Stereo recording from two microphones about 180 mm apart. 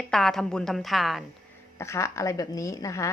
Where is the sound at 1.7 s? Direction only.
15° left (ahead or behind).